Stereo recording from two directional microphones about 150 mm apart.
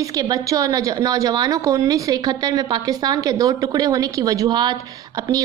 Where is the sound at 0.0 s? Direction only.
25° right (ahead or behind).